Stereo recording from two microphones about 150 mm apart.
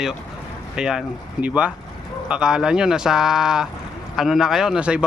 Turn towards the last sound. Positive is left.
turn(degrees=-5)  # may be behind; listen again after turning